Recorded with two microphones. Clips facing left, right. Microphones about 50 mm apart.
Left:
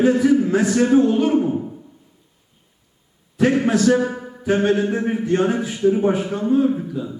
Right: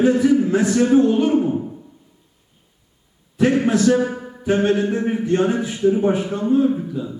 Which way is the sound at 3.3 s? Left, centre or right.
Left.